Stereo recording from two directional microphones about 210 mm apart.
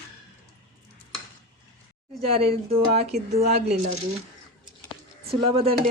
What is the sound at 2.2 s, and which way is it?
Speech, 25° right (ahead or behind).